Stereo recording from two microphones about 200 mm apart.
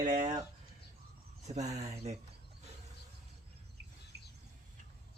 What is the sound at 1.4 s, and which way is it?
Speech, 35° right (ahead or behind).